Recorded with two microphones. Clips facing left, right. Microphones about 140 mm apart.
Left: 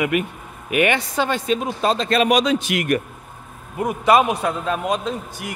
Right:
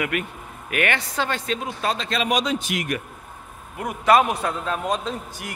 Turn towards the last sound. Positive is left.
turn(degrees=5)  # may be behind; listen again after turning